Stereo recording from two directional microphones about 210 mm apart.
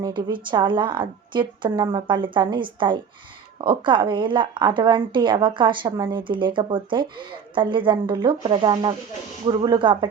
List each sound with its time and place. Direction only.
0.3 s speech: 20° right (ahead or behind)